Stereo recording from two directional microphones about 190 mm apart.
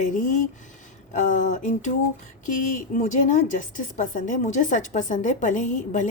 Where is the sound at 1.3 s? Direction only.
40° left (ahead or behind).